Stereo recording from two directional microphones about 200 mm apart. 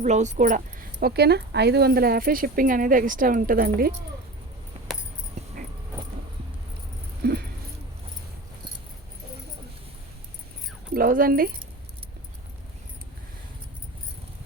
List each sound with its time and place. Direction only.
0.0 s a woman's voice: 35° right (ahead or behind)
0.9 s speech: 55° right (ahead or behind)
7.2 s a sound: 50° right (ahead or behind)
10.9 s speech: 45° right (ahead or behind)